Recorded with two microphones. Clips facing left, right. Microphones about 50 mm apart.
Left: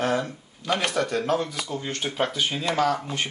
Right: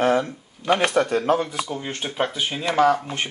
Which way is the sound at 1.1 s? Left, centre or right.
Centre.